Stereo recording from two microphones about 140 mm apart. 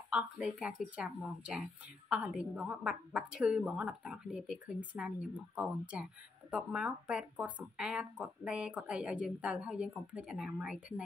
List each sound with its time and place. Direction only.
0.1 s speech: 10° right (ahead or behind)